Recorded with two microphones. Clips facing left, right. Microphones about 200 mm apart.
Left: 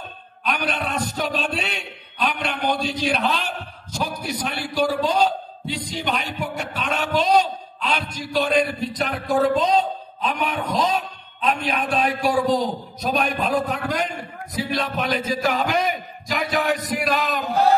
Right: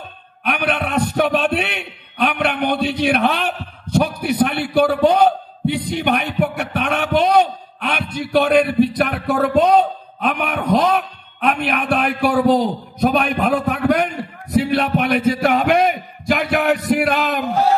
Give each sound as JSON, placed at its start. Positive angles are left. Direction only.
{"t": 0.4, "sound": "a man's voice", "side_deg": -60}